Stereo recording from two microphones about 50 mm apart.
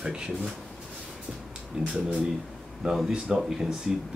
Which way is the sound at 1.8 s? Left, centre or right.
Centre.